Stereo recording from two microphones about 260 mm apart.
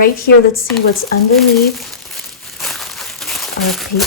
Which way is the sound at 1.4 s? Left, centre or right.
Centre.